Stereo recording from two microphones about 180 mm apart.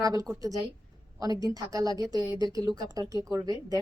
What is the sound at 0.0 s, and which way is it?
A woman's voice, 20° right (ahead or behind).